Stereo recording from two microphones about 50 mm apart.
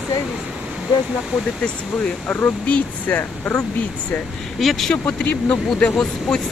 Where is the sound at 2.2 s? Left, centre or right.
Left.